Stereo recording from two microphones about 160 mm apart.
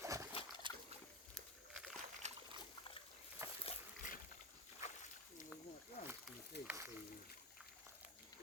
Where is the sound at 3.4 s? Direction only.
15° right (ahead or behind).